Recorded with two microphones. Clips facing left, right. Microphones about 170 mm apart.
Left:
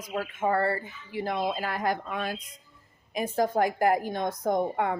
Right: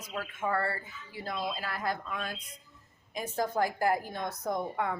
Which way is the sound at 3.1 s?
70° left (ahead or behind).